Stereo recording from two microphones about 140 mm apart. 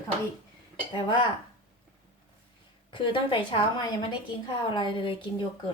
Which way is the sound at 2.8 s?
35° left (ahead or behind).